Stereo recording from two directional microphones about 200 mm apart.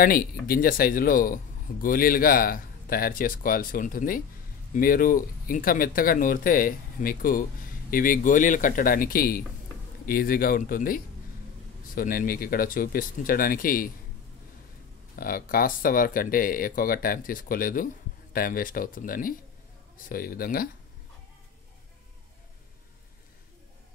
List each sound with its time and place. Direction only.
0.0 s speech: 45° left (ahead or behind)
15.1 s speech: 45° left (ahead or behind)